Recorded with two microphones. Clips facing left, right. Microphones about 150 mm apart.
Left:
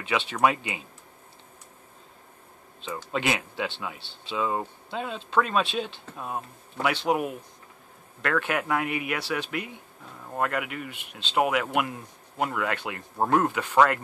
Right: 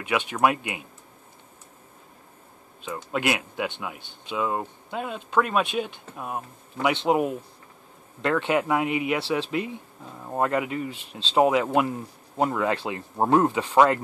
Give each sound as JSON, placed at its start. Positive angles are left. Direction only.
{"t": 0.0, "sound": "speech", "side_deg": -10}
{"t": 2.8, "sound": "speech", "side_deg": -10}